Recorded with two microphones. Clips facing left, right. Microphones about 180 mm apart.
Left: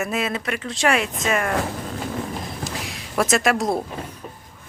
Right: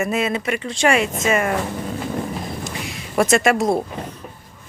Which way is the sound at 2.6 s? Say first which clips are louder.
Right 2 dB; centre (ahead or behind).